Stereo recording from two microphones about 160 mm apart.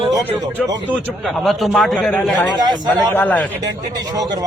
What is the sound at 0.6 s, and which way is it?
A man's voice, centre (ahead or behind).